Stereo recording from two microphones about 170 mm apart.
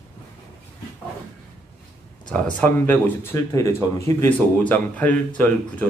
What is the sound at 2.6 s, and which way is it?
A man's voice, 15° left (ahead or behind).